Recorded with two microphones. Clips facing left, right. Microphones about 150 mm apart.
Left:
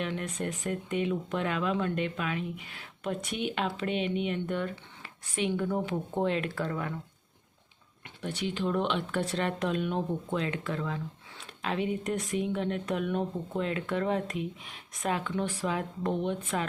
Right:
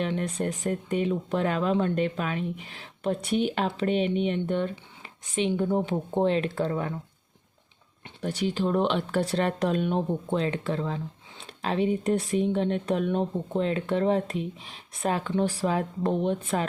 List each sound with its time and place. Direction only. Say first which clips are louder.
0.0 s speech: right 5 dB; 35° right (ahead or behind)
8.2 s speech: right 5 dB; 40° right (ahead or behind)